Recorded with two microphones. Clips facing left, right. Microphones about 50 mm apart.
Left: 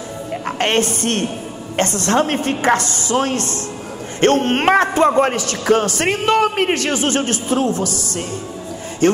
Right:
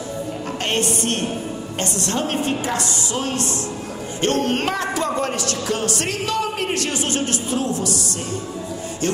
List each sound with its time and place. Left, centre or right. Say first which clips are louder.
0.6 s a man's voice: left 5 dB; left
9.0 s a man's voice: left 8 dB; left